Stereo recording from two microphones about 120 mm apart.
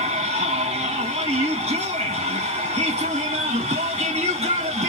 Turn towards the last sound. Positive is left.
turn(degrees=-65)  # may be behind; listen again after turning